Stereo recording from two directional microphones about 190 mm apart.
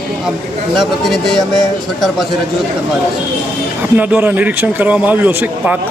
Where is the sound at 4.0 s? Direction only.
10° right (ahead or behind).